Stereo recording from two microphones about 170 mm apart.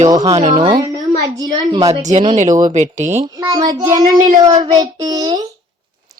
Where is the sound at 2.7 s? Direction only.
45° right (ahead or behind).